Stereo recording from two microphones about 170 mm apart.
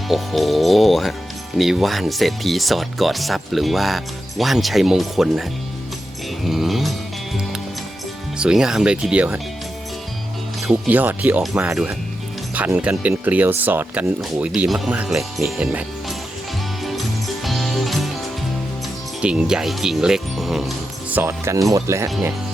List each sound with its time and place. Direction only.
0.1 s speech: centre (ahead or behind)
8.4 s speech: 5° right (ahead or behind)
10.7 s speech: 10° right (ahead or behind)
17.4 s music: centre (ahead or behind)
19.2 s speech: 5° right (ahead or behind)
21.2 s speech: 15° right (ahead or behind)